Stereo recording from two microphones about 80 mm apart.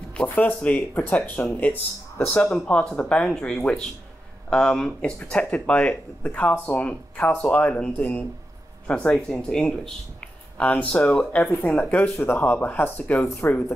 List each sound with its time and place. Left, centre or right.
0.1 s speech: centre